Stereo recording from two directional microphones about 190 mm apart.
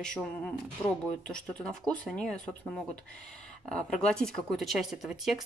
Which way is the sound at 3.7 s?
5° left (ahead or behind).